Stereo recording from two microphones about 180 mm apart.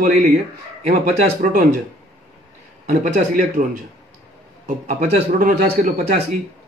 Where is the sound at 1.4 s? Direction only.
50° right (ahead or behind).